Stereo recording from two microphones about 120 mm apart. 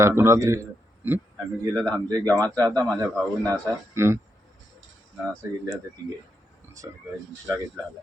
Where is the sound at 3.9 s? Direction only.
20° right (ahead or behind).